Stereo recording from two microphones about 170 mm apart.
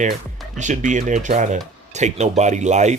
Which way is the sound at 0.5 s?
45° right (ahead or behind).